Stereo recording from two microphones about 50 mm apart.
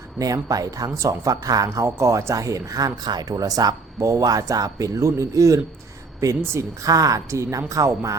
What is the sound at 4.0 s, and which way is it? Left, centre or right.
A man's voice, right.